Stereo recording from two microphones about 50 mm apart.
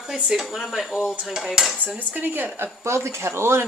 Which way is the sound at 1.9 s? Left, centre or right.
Right.